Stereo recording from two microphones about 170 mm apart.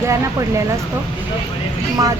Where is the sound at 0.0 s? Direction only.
15° right (ahead or behind).